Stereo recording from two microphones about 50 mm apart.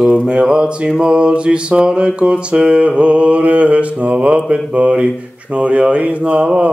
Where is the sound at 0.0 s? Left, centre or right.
Right.